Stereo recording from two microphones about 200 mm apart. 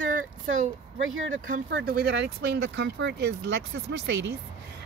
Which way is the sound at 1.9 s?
50° right (ahead or behind).